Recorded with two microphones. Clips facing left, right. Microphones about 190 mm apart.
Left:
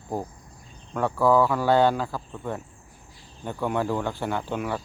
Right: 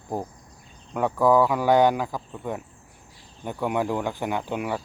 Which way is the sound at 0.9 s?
15° right (ahead or behind).